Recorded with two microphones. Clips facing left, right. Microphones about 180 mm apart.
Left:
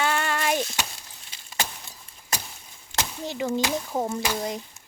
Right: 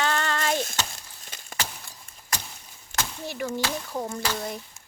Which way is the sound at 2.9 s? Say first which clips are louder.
Left 2 dB; 20° left (ahead or behind).